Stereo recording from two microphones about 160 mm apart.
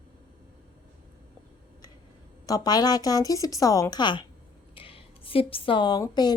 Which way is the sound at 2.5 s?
25° left (ahead or behind).